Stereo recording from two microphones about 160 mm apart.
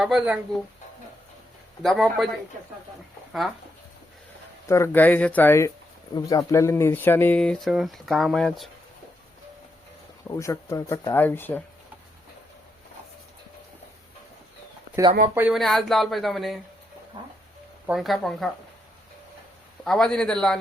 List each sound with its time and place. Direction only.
0.0 s speech: 5° right (ahead or behind)
1.8 s speech: centre (ahead or behind)
4.7 s speech: 15° left (ahead or behind)
10.2 s speech: 20° left (ahead or behind)
15.0 s speech: 20° right (ahead or behind)
15.4 s speech: 5° right (ahead or behind)
17.2 s speech: 30° right (ahead or behind)
17.8 s speech: centre (ahead or behind)
19.8 s speech: 5° left (ahead or behind)